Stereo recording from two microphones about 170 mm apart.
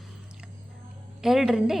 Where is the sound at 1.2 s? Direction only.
Centre (ahead or behind).